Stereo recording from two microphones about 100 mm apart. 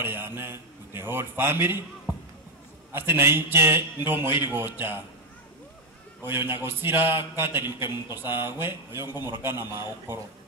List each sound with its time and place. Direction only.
0.0 s a man's voice: 20° right (ahead or behind)
2.1 s music: 20° right (ahead or behind)
2.9 s a man's voice: 25° right (ahead or behind)
6.2 s a man's voice: 20° right (ahead or behind)